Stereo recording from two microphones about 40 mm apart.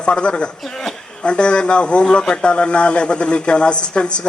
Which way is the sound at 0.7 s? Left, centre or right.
Centre.